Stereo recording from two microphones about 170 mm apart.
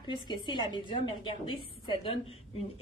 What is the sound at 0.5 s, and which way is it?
A woman's voice, 25° left (ahead or behind).